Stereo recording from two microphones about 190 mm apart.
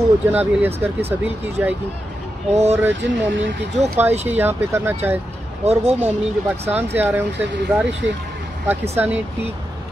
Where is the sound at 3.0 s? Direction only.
70° right (ahead or behind).